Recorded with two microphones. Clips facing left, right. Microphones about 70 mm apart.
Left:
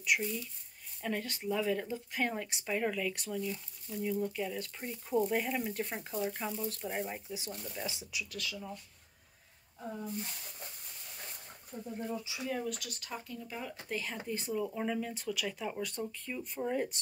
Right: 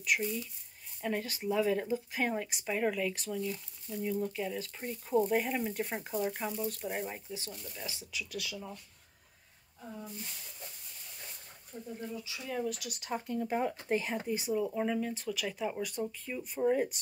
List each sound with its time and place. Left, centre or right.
0.0 s speech: centre
7.2 s speech: centre
8.3 s speech: centre
12.4 s speech: centre
13.1 s speech: right
13.8 s speech: right
14.3 s speech: centre